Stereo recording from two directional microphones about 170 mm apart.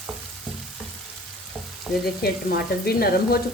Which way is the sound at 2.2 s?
65° left (ahead or behind).